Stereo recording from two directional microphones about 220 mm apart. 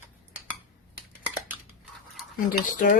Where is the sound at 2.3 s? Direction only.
40° left (ahead or behind).